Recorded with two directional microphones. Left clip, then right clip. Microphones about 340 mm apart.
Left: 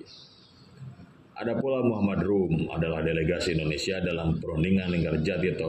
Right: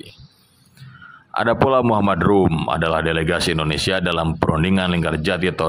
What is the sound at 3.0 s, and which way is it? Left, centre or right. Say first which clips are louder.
Speech: right 8 dB; right.